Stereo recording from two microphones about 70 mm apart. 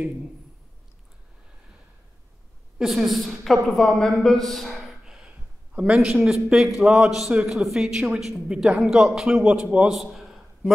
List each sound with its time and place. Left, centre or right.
2.8 s a woman's voice: centre
5.0 s a sound: centre
5.8 s a woman's voice: centre